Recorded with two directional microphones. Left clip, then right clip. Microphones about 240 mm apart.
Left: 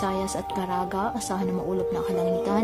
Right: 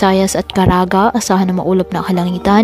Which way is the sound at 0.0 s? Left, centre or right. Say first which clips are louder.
Right 14 dB; right.